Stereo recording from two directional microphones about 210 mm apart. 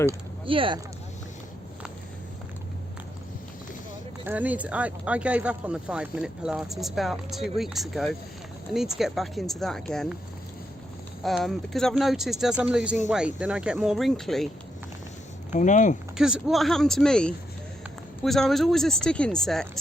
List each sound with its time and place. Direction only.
0.4 s speech: 25° right (ahead or behind)
4.3 s speech: 5° right (ahead or behind)
11.2 s speech: centre (ahead or behind)
15.5 s speech: 35° left (ahead or behind)
16.1 s speech: 5° right (ahead or behind)